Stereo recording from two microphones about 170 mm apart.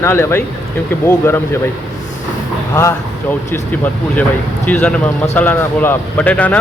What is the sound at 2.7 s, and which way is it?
Speech, 15° left (ahead or behind).